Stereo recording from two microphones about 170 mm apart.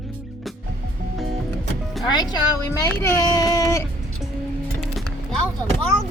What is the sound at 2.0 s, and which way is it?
Speech, 25° left (ahead or behind).